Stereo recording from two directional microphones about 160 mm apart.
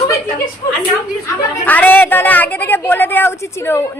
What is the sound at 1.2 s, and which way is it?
A woman's voice, 10° left (ahead or behind).